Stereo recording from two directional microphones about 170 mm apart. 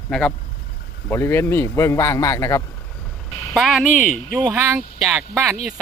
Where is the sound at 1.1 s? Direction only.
15° left (ahead or behind).